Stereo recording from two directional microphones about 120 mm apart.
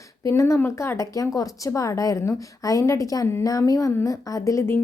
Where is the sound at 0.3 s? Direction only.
25° left (ahead or behind).